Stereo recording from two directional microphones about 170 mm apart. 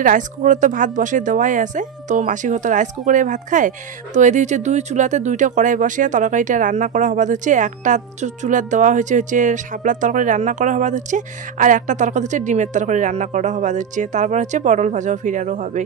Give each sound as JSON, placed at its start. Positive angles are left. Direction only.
{"t": 0.0, "sound": "speech", "side_deg": -50}